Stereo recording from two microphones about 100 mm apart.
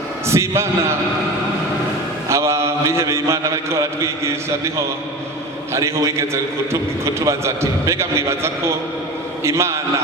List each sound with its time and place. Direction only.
0.3 s a man's voice: 25° right (ahead or behind)
2.3 s a man's voice: 30° right (ahead or behind)
5.7 s a man's voice: 30° right (ahead or behind)